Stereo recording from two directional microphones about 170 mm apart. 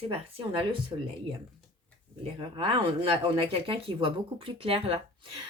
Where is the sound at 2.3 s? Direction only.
30° right (ahead or behind).